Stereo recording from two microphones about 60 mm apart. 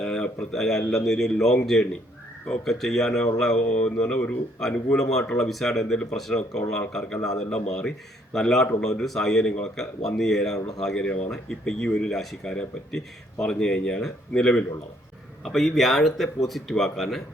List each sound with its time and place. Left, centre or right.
0.0 s a sound: centre
0.5 s a man's voice: centre
4.9 s a man's voice: centre
15.4 s a man's voice: centre